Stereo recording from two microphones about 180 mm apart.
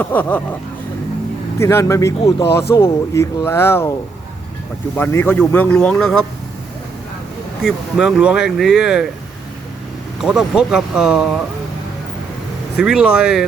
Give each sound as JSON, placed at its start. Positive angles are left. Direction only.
{"t": 0.0, "sound": "speech", "side_deg": 10}
{"t": 1.5, "sound": "speech", "side_deg": 15}
{"t": 4.9, "sound": "speech", "side_deg": 10}
{"t": 7.6, "sound": "speech", "side_deg": -5}
{"t": 10.2, "sound": "speech", "side_deg": 0}
{"t": 12.7, "sound": "speech", "side_deg": -5}